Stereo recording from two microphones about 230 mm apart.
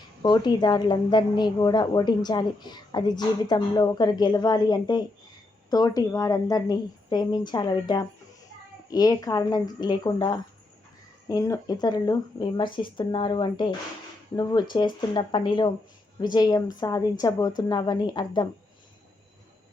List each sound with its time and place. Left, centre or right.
0.2 s a woman's voice: centre